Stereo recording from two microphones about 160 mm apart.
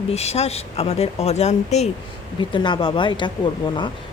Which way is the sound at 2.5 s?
30° left (ahead or behind).